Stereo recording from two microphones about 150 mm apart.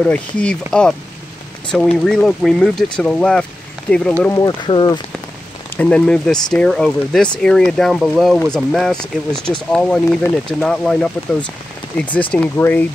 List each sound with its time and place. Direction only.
0.0 s speech: 5° left (ahead or behind)
1.7 s speech: 5° left (ahead or behind)
4.3 s speech: 25° left (ahead or behind)
5.8 s speech: 5° left (ahead or behind)